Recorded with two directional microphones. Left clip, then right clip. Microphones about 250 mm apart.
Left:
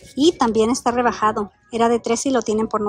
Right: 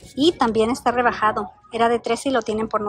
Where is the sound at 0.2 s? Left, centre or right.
Centre.